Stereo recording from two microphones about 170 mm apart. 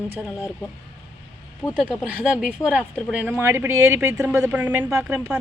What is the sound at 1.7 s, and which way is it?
Speech, 5° right (ahead or behind).